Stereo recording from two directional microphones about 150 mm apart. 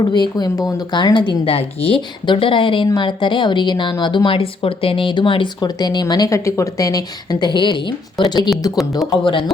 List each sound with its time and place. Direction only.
0.0 s speech: 30° left (ahead or behind)